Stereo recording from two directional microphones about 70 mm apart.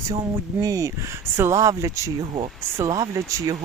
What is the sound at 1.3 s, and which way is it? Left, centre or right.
Speech, right.